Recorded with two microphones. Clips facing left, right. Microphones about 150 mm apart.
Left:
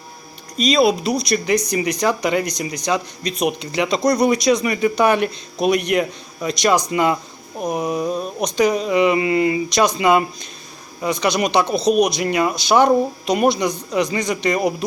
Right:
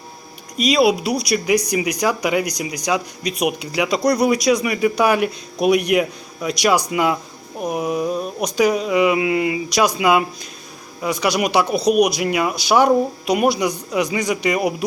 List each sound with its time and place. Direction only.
0.5 s speech: 10° right (ahead or behind)